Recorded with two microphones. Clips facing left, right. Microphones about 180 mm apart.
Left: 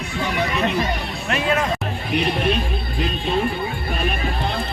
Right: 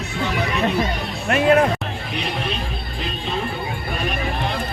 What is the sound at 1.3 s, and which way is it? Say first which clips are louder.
Speech: right 6 dB; 50° right (ahead or behind).